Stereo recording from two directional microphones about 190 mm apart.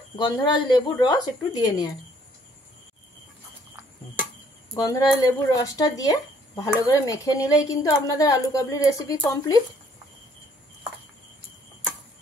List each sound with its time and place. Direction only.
0.1 s speech: 25° left (ahead or behind)
4.7 s speech: 20° left (ahead or behind)